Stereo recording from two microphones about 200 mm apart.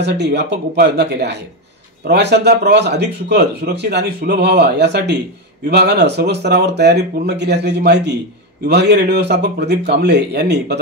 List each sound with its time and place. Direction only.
0.0 s speech: 55° right (ahead or behind)